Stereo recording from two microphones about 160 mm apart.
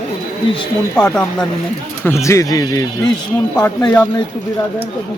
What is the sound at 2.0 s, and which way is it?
Speech, 15° left (ahead or behind).